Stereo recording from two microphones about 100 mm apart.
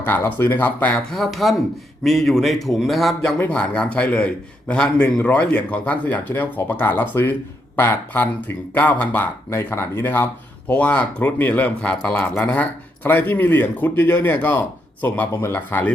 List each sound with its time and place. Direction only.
0.0 s a man's voice: 20° left (ahead or behind)
1.1 s a man's voice: centre (ahead or behind)
3.3 s a man's voice: 15° left (ahead or behind)